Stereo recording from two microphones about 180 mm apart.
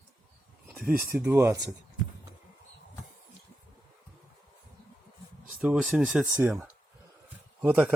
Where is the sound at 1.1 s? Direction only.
10° right (ahead or behind).